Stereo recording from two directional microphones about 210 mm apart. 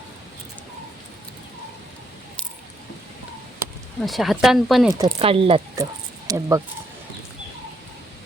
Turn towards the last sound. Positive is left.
turn(degrees=-15)  # may be behind; listen again after turning